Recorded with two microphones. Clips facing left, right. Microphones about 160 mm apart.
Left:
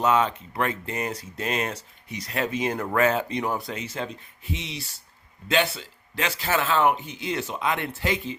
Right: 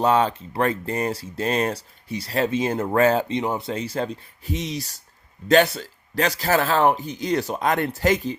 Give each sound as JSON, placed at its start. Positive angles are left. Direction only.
{"t": 0.0, "sound": "speech", "side_deg": -35}
{"t": 3.8, "sound": "speech", "side_deg": -35}